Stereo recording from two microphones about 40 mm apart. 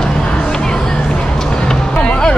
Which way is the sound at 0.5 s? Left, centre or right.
Centre.